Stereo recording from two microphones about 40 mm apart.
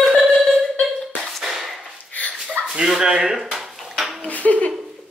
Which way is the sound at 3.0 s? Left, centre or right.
Centre.